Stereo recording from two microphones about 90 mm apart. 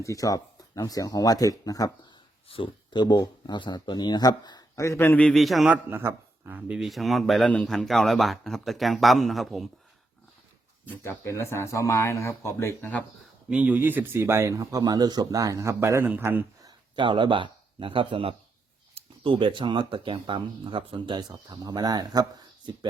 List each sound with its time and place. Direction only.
0.0 s speech: 40° left (ahead or behind)
2.5 s speech: 85° left
3.0 s speech: 50° left (ahead or behind)
4.7 s speech: 35° left (ahead or behind)
5.2 s speech: centre (ahead or behind)
5.7 s a man's voice: 25° right (ahead or behind)
6.7 s speech: 5° right (ahead or behind)
10.8 s speech: 25° left (ahead or behind)
12.8 s speech: 15° left (ahead or behind)
13.5 s speech: 15° right (ahead or behind)
16.9 s speech: 65° right (ahead or behind)